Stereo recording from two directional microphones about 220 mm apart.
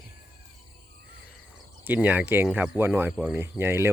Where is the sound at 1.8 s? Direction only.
5° right (ahead or behind).